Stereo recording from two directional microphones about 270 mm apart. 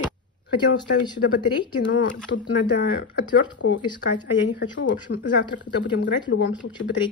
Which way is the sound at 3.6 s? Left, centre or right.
Left.